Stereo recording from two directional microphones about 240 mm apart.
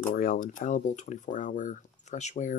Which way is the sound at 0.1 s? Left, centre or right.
Left.